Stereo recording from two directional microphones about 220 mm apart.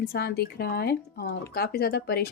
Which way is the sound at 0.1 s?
45° left (ahead or behind).